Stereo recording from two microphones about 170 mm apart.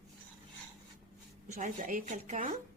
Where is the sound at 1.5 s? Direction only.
45° right (ahead or behind).